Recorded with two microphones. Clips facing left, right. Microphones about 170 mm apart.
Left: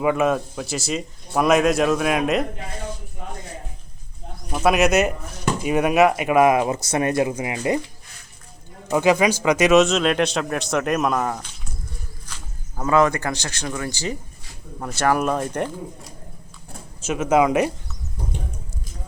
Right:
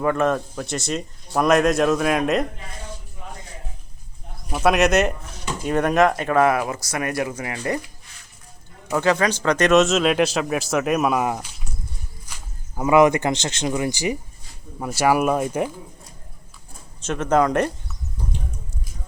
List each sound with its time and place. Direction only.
0.0 s speech: 5° left (ahead or behind)
4.5 s speech: centre (ahead or behind); by 7.8 s 20° left (ahead or behind)
8.9 s speech: 10° left (ahead or behind); by 11.4 s 10° right (ahead or behind)
12.7 s speech: 15° right (ahead or behind)
17.0 s speech: 5° left (ahead or behind)